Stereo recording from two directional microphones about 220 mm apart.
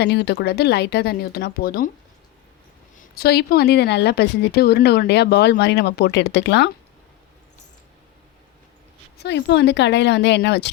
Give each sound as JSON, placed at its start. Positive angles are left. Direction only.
{"t": 0.0, "sound": "a woman's voice", "side_deg": 50}
{"t": 3.0, "sound": "a woman's voice", "side_deg": 45}
{"t": 9.1, "sound": "a woman's voice", "side_deg": 50}